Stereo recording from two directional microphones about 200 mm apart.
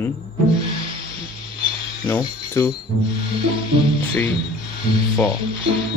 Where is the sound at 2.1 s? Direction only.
15° left (ahead or behind).